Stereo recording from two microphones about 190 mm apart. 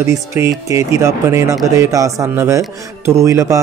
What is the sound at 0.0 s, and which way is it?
A man's voice, 15° right (ahead or behind).